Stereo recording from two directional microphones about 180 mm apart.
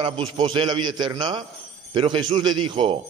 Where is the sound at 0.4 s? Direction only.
25° right (ahead or behind).